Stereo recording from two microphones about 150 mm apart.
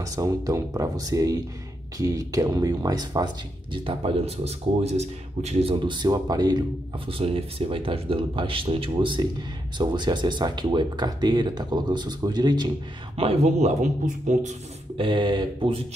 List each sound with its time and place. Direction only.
0.0 s speech: 20° right (ahead or behind)
3.7 s speech: 35° right (ahead or behind)
7.1 s speech: 40° right (ahead or behind)
13.1 s a man's voice: 40° right (ahead or behind)
15.0 s speech: 35° right (ahead or behind)